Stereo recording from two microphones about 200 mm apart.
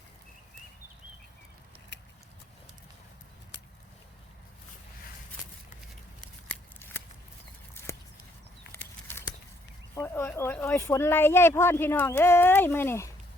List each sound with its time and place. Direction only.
1.9 s vehicle: 60° left (ahead or behind)
6.7 s shuffling cards: 10° left (ahead or behind)
8.7 s bird flight: 10° left (ahead or behind)
9.9 s speech: 15° left (ahead or behind)